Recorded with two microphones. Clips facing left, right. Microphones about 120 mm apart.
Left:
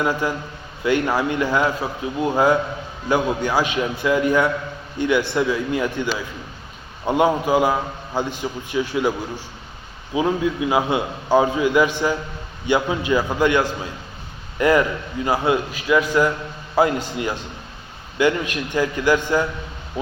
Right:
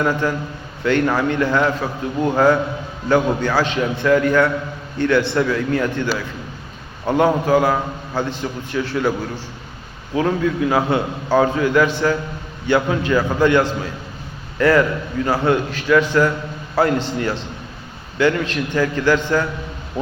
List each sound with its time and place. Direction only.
0.0 s a man's voice: 10° left (ahead or behind)